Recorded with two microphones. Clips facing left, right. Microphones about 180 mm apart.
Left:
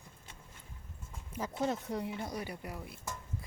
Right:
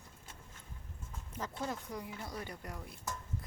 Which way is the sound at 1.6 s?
25° left (ahead or behind).